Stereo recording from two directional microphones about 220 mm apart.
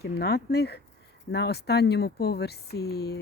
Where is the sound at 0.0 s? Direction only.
45° left (ahead or behind).